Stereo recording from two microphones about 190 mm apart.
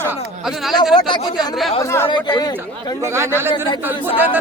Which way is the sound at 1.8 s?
15° left (ahead or behind).